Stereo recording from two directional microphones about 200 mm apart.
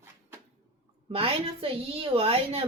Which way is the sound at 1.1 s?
25° right (ahead or behind).